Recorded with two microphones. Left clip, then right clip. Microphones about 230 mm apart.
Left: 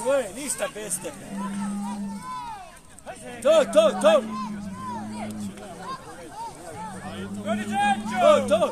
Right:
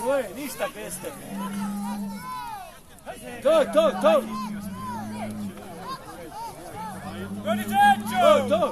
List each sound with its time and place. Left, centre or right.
0.0 s speech: left
1.3 s music: right
3.4 s speech: left
4.3 s music: right
7.4 s speech: right